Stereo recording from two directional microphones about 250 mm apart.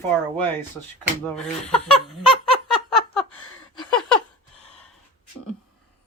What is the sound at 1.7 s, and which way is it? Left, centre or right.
Speech, centre.